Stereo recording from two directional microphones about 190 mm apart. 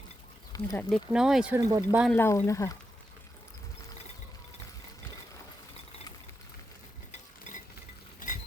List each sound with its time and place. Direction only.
0.5 s speech: 15° left (ahead or behind)
0.9 s speech: centre (ahead or behind)
2.1 s speech: 10° left (ahead or behind)
7.5 s ratchet: 40° left (ahead or behind)